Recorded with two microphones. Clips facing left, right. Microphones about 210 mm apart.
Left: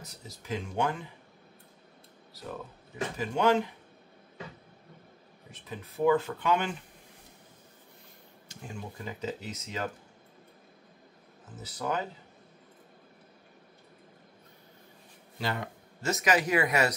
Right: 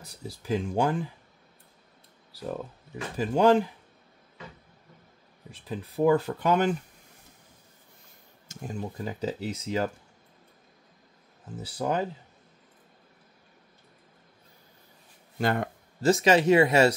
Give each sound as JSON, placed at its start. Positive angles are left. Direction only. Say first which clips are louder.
{"t": 0.0, "sound": "speech", "louder": "right 6 dB", "side_deg": -30}
{"t": 3.2, "sound": "speech", "louder": "right 5 dB", "side_deg": -35}
{"t": 5.5, "sound": "speech", "louder": "right 6 dB", "side_deg": -35}
{"t": 8.5, "sound": "speech", "louder": "right 6 dB", "side_deg": -40}
{"t": 11.6, "sound": "speech", "louder": "right 4 dB", "side_deg": -30}
{"t": 15.3, "sound": "speech", "louder": "right 7 dB", "side_deg": -50}
{"t": 16.0, "sound": "speech", "louder": "right 7 dB", "side_deg": -30}